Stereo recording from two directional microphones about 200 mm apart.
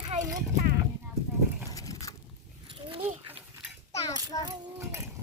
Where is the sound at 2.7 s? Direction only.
25° right (ahead or behind).